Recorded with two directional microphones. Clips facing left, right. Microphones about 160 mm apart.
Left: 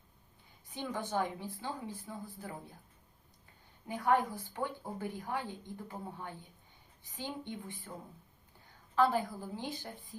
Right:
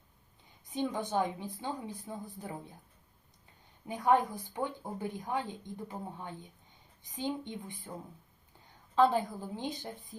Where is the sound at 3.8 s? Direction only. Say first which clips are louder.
Right 3 dB; 20° right (ahead or behind).